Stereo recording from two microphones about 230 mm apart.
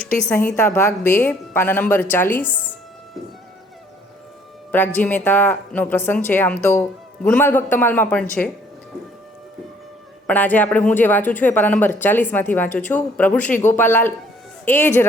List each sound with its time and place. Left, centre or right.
0.0 s speech: centre
4.7 s speech: centre
10.2 s speech: centre